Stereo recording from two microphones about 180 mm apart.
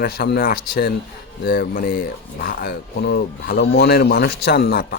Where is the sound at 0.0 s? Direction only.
55° left (ahead or behind).